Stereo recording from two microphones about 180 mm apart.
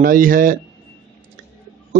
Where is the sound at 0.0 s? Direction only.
50° right (ahead or behind).